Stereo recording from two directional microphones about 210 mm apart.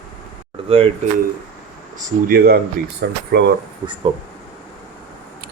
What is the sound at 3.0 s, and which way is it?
Speech, 50° right (ahead or behind).